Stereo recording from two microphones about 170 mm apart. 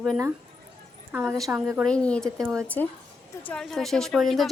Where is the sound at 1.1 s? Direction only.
15° right (ahead or behind).